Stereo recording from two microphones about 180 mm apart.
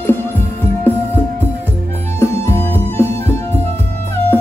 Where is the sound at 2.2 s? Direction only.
15° left (ahead or behind).